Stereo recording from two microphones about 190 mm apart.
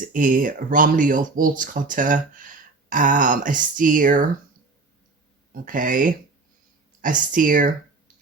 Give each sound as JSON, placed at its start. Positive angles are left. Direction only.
{"t": 0.0, "sound": "speech", "side_deg": -45}
{"t": 5.5, "sound": "speech", "side_deg": -45}